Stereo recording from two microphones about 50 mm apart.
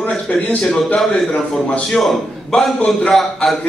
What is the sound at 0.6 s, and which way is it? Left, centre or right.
Speech, centre.